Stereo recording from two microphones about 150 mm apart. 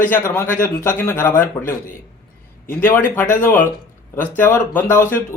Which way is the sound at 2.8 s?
15° left (ahead or behind).